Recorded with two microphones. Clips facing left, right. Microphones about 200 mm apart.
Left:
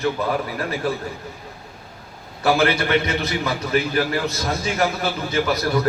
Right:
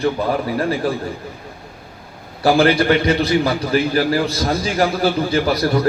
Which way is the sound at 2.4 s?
30° right (ahead or behind).